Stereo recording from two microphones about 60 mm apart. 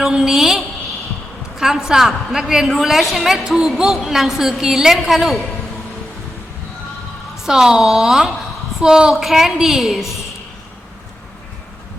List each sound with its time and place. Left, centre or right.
0.0 s a woman's voice: centre
7.3 s a woman's voice: centre